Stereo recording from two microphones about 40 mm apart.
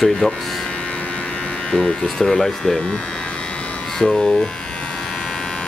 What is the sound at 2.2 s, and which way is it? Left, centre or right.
Speech, centre.